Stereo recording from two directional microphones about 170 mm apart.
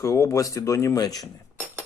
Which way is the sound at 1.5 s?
10° right (ahead or behind).